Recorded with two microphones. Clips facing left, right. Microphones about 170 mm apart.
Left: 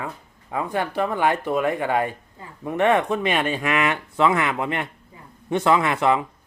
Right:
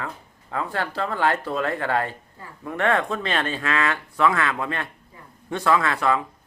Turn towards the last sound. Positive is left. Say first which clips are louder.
# left 2 dB
turn(degrees=20)  # may be behind; listen again after turning